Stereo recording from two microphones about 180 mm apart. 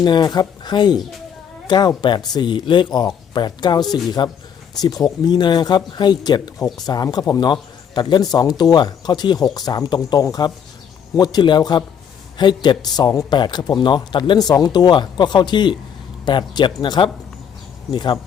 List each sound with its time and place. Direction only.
0.0 s a man's voice: 25° left (ahead or behind)